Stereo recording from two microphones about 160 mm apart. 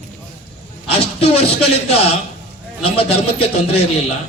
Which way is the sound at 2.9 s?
40° left (ahead or behind).